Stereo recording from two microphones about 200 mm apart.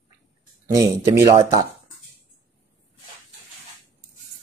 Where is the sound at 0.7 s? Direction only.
15° right (ahead or behind).